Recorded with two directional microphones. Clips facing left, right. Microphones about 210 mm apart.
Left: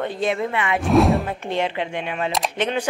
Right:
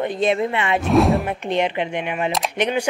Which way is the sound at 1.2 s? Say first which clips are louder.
Right 3 dB; 20° right (ahead or behind).